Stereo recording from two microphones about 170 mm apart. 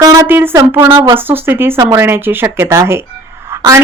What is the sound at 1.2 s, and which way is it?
Speech, 10° right (ahead or behind).